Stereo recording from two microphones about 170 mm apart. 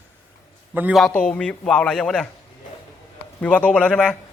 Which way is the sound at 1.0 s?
5° left (ahead or behind).